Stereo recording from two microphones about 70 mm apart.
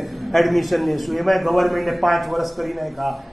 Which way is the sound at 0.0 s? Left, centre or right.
Centre.